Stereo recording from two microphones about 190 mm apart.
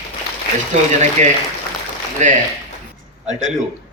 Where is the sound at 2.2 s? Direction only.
40° right (ahead or behind).